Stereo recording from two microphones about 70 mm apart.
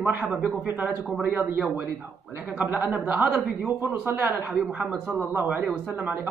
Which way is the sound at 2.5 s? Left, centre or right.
Centre.